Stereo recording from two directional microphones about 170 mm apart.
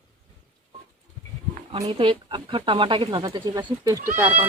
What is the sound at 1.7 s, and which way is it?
Speech, 35° right (ahead or behind).